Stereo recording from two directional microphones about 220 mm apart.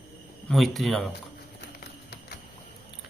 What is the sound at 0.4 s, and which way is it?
Speech, centre (ahead or behind).